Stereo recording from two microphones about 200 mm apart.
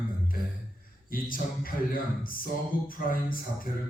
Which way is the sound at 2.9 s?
45° left (ahead or behind).